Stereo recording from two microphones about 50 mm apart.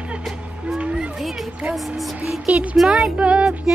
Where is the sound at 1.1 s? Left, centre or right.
Centre.